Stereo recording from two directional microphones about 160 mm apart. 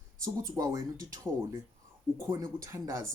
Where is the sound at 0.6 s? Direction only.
20° right (ahead or behind).